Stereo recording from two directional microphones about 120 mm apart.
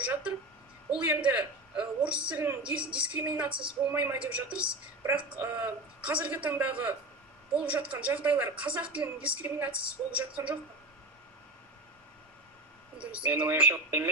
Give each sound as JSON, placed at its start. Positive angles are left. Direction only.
{"t": 1.0, "sound": "a woman's voice", "side_deg": -10}
{"t": 13.0, "sound": "a woman's voice", "side_deg": -10}